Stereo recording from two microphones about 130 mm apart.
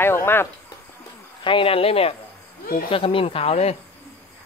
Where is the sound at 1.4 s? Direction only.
40° left (ahead or behind).